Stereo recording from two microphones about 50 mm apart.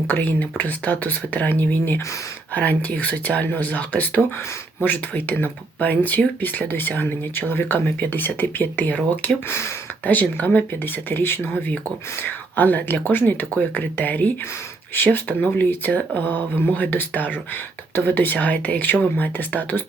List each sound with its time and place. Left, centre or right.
0.1 s speech: left
1.5 s speech: left
9.5 s speech: left
10.1 s speech: left
11.1 s speech: left
12.2 s speech: left
18.3 s speech: left